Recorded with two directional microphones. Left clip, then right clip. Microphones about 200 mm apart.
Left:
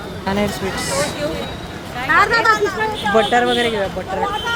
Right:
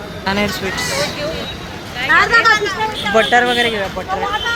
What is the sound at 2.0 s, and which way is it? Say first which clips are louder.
Speech: right 2 dB; 5° left (ahead or behind).